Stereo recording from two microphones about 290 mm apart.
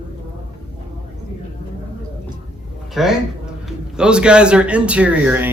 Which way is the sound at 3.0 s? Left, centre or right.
Centre.